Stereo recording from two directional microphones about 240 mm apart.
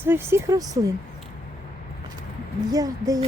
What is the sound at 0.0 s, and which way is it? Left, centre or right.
Speech, centre.